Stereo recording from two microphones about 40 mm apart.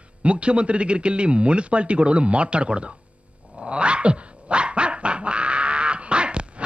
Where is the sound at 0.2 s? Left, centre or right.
Right.